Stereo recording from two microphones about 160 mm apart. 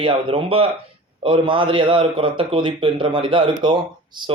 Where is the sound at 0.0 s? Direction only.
35° right (ahead or behind).